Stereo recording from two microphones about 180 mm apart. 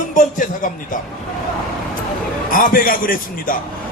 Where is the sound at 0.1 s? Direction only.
45° left (ahead or behind).